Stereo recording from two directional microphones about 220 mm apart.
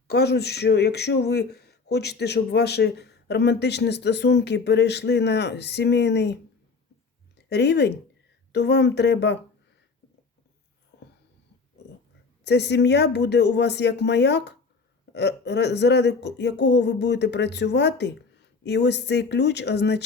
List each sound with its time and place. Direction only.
0.1 s speech: 50° left (ahead or behind)
7.3 s speech: 50° left (ahead or behind)
12.5 s speech: 50° left (ahead or behind)